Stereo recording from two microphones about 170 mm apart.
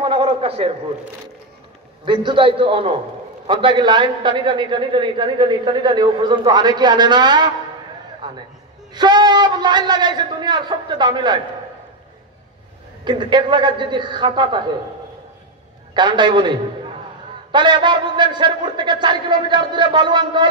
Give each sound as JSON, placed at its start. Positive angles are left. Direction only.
{"t": 0.0, "sound": "a sound", "side_deg": -30}
{"t": 2.0, "sound": "a man's voice", "side_deg": -30}
{"t": 13.0, "sound": "a man's voice", "side_deg": -25}
{"t": 15.9, "sound": "a man's voice", "side_deg": -25}